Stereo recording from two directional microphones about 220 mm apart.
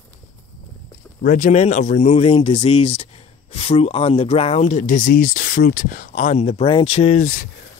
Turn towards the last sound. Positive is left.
turn(degrees=35)  # may be behind; listen again after turning